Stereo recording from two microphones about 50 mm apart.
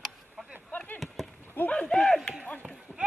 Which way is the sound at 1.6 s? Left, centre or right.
Left.